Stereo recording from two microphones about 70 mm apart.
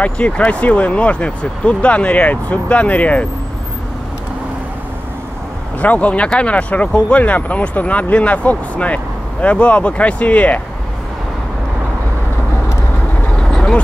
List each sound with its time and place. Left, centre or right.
0.0 s speech: centre
5.8 s speech: left
13.4 s vehicle: centre